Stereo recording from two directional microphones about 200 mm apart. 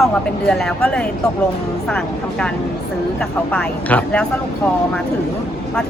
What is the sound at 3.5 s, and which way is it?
Speech, 5° left (ahead or behind).